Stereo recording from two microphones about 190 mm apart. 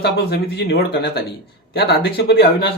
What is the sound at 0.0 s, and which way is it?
Speech, 60° left (ahead or behind).